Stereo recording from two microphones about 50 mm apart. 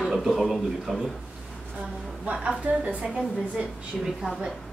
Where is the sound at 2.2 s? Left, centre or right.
Right.